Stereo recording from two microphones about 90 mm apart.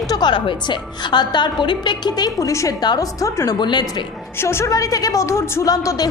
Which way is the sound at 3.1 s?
35° left (ahead or behind).